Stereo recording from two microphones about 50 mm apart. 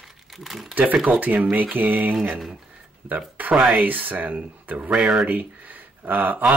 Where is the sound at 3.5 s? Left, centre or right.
Right.